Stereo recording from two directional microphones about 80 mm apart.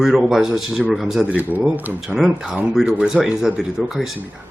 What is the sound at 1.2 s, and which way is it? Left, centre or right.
Speech, centre.